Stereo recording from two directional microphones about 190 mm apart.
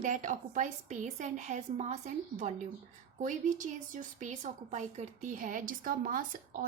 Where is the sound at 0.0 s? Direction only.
40° right (ahead or behind).